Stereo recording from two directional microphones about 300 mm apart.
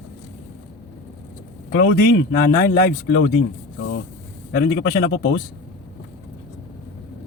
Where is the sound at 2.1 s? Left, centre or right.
Left.